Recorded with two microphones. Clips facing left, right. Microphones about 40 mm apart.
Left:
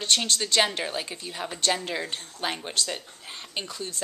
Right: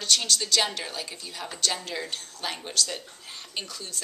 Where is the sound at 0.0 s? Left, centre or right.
Left.